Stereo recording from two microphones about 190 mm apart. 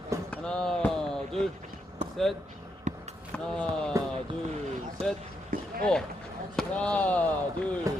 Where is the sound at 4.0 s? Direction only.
15° right (ahead or behind).